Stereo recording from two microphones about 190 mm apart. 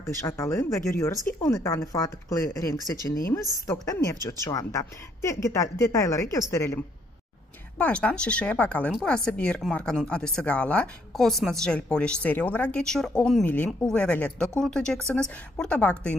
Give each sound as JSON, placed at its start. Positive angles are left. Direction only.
{"t": 0.2, "sound": "speech", "side_deg": 15}
{"t": 3.6, "sound": "speech", "side_deg": 20}